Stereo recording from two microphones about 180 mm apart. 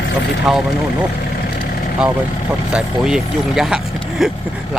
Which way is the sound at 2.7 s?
5° right (ahead or behind).